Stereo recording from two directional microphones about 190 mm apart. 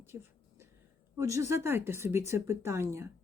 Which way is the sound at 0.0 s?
15° right (ahead or behind).